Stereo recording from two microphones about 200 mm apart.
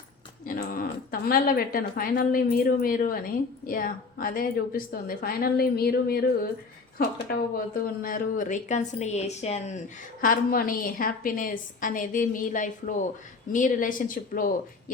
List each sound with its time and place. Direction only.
0.4 s a woman's voice: 45° left (ahead or behind)
8.0 s a woman's voice: 45° left (ahead or behind)
10.2 s a woman's voice: 45° left (ahead or behind)